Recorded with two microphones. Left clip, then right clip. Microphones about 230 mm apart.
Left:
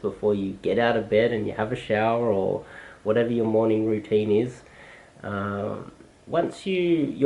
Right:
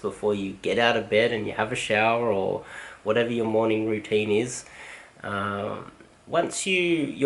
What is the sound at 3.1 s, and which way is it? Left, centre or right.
Speech, centre.